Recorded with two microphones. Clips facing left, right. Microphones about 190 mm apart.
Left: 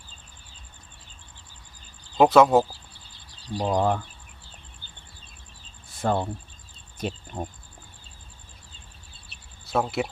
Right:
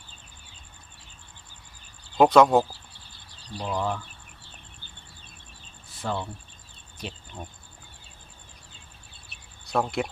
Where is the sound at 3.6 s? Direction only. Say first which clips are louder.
Left 6 dB; 45° left (ahead or behind).